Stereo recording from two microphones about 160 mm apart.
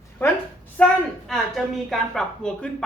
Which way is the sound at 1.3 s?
Centre (ahead or behind).